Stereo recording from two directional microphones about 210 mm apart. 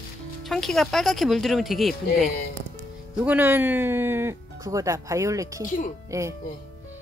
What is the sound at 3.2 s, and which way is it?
Speech, 10° right (ahead or behind).